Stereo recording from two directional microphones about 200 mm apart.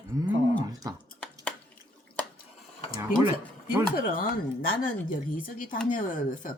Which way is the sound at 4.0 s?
45° left (ahead or behind).